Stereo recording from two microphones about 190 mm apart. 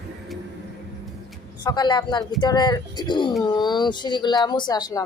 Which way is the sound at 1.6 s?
20° left (ahead or behind).